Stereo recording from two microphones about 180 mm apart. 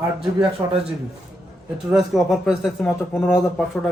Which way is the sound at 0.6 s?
15° right (ahead or behind).